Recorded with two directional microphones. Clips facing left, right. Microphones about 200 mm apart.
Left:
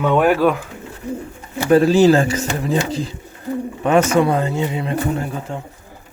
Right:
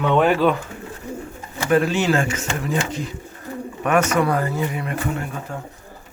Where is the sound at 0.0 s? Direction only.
10° left (ahead or behind).